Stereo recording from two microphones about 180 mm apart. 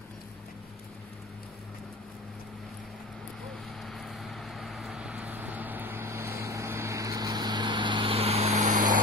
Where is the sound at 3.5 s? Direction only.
Centre (ahead or behind); by 9.0 s 45° right (ahead or behind).